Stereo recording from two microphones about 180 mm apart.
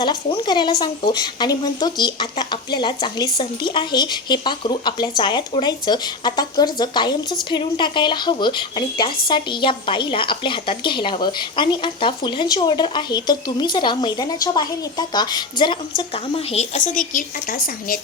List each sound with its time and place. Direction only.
0.0 s a woman's voice: 25° left (ahead or behind); by 18.0 s 50° left (ahead or behind)